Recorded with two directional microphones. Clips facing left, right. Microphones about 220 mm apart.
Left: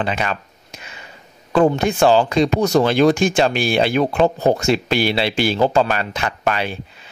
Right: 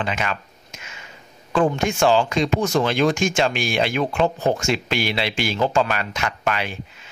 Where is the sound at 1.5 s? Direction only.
35° left (ahead or behind).